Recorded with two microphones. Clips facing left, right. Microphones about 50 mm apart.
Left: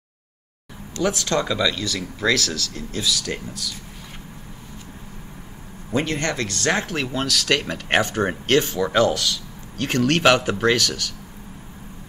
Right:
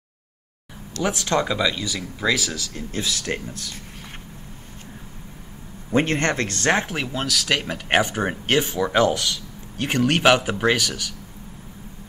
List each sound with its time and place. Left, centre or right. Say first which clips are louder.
1.0 s speech: even; centre
2.9 s speech: left 1 dB; right
5.9 s speech: right 3 dB; right
6.9 s speech: left 1 dB; centre